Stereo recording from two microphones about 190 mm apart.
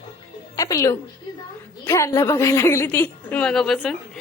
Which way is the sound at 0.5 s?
15° left (ahead or behind).